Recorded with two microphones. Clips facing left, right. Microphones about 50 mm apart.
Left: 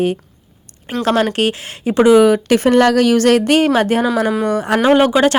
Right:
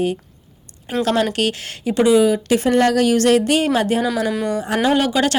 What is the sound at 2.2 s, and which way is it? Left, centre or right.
Speech, left.